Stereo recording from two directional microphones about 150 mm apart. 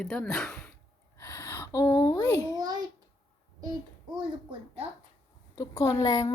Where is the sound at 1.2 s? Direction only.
15° left (ahead or behind).